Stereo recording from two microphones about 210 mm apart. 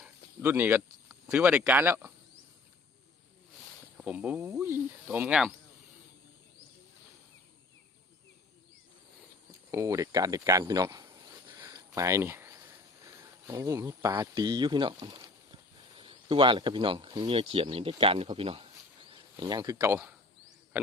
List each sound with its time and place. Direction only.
0.0 s a sound: 10° right (ahead or behind)
1.3 s speech: 5° right (ahead or behind)
3.9 s speech: 5° right (ahead or behind)
9.7 s speech: 15° right (ahead or behind)
11.6 s a sound: 15° right (ahead or behind)
16.0 s speech: 25° right (ahead or behind)